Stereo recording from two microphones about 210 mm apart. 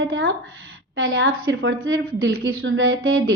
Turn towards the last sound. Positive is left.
turn(degrees=-75)  # may be behind; listen again after turning